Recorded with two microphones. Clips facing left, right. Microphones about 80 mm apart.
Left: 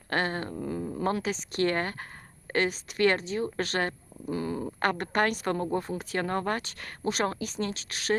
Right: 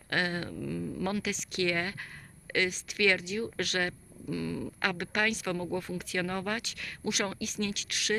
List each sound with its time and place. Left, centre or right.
0.1 s speech: left